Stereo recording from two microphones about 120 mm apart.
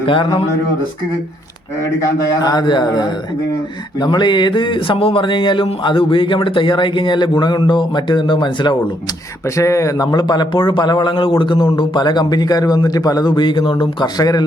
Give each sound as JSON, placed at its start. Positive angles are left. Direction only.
{"t": 0.0, "sound": "speech", "side_deg": 45}
{"t": 2.4, "sound": "speech", "side_deg": 35}
{"t": 9.6, "sound": "speech", "side_deg": 25}